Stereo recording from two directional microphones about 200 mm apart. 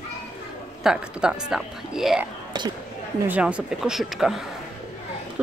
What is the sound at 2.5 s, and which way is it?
Speech, 20° right (ahead or behind).